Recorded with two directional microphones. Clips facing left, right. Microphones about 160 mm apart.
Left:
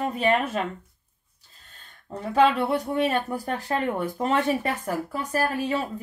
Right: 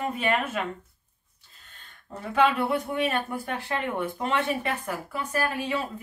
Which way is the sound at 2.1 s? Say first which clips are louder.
Left 3 dB; 35° left (ahead or behind).